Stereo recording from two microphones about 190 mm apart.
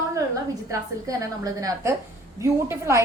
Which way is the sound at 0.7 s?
20° right (ahead or behind).